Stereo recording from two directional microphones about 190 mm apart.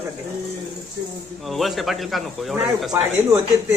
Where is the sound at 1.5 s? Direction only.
Centre (ahead or behind).